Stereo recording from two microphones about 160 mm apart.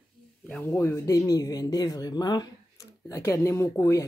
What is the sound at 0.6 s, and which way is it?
Speech, 15° left (ahead or behind).